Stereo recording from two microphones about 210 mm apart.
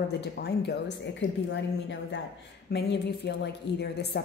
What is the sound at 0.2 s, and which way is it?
A woman's voice, 50° left (ahead or behind).